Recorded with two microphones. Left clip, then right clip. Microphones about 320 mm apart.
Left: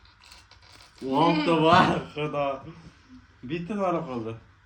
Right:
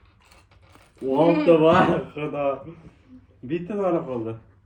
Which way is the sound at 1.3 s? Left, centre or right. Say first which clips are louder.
Right 5 dB; centre.